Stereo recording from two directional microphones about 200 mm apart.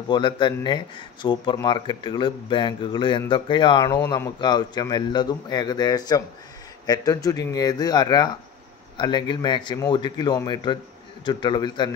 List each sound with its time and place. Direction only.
0.1 s speech: 25° left (ahead or behind)